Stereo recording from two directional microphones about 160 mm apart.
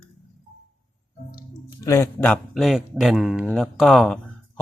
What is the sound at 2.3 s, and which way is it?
Speech, centre (ahead or behind).